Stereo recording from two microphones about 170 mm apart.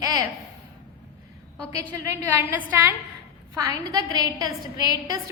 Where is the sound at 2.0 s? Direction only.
15° right (ahead or behind).